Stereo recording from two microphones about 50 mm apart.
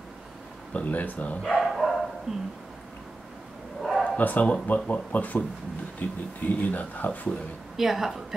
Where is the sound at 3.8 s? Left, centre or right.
Centre.